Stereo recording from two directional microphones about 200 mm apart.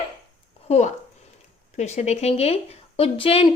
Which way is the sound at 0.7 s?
35° left (ahead or behind).